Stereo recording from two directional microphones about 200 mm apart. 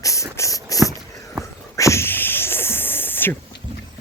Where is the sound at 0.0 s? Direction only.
15° left (ahead or behind).